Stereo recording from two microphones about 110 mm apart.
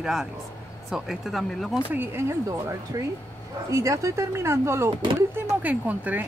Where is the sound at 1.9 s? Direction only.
20° right (ahead or behind).